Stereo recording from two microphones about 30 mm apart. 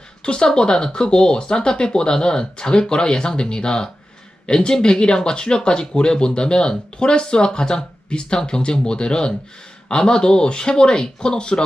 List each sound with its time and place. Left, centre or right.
0.2 s speech: left